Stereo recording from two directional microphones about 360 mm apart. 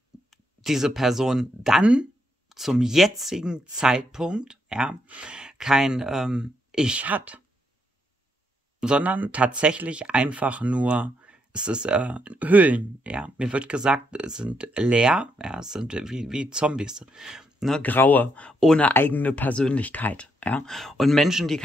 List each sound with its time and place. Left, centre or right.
0.3 s speech: centre
8.7 s speech: centre